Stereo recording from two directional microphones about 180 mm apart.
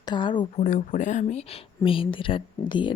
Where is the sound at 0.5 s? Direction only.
45° left (ahead or behind); by 2.9 s 25° left (ahead or behind).